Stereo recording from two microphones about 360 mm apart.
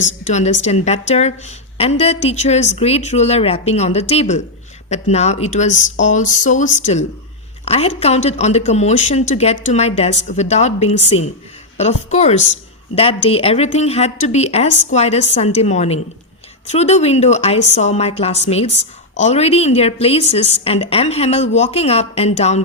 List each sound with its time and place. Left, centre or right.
0.3 s a woman's voice: centre
12.1 s a woman's voice: centre
17.6 s speech: left
17.8 s a woman's voice: centre